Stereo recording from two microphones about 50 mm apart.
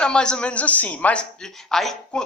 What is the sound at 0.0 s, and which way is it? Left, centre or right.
Speech, centre.